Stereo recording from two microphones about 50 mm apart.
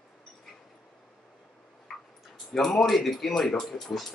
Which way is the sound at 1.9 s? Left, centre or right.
Centre.